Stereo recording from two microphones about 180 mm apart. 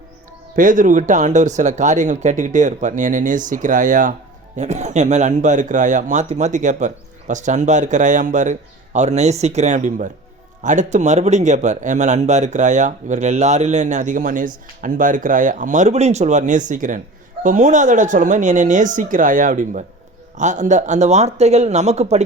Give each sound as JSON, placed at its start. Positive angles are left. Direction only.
{"t": 0.5, "sound": "speech", "side_deg": -45}